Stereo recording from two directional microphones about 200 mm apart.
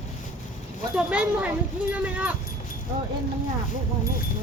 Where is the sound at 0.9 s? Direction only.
5° right (ahead or behind).